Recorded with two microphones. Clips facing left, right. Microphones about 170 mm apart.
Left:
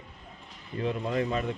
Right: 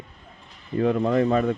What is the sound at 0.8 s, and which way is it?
Speech, 85° right.